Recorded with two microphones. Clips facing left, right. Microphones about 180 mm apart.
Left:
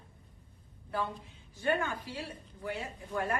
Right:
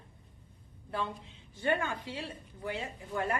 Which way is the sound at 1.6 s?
25° right (ahead or behind).